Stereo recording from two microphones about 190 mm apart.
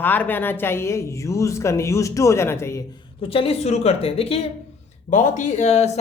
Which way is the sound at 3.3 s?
30° left (ahead or behind).